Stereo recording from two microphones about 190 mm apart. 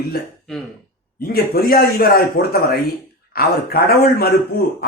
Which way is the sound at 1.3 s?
55° left (ahead or behind).